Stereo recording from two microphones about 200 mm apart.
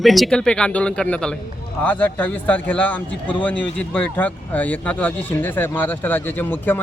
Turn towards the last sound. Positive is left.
turn(degrees=10)  # may be behind; listen again after turning